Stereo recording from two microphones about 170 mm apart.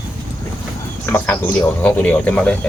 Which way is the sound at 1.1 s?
15° left (ahead or behind).